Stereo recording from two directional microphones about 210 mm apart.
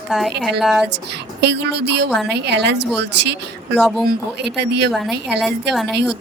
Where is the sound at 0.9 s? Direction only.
55° right (ahead or behind).